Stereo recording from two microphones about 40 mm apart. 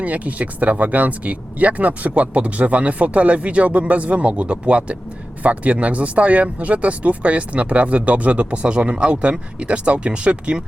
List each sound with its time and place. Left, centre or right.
0.0 s speech: right